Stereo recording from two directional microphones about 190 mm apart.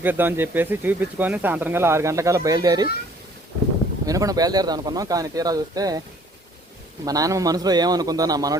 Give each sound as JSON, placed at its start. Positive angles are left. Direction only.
{"t": 0.0, "sound": "speech", "side_deg": -10}
{"t": 4.0, "sound": "speech", "side_deg": -20}
{"t": 7.0, "sound": "speech", "side_deg": -20}